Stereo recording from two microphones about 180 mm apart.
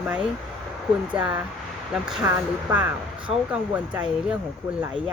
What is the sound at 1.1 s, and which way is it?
Speech, 5° right (ahead or behind).